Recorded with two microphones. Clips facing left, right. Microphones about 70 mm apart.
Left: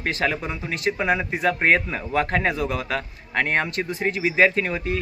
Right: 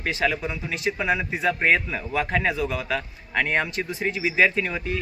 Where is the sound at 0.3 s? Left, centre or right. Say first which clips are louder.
Even; left.